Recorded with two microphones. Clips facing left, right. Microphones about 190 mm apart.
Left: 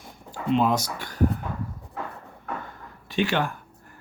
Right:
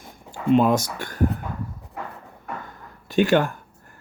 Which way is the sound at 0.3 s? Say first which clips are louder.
Right 5 dB; 50° right (ahead or behind).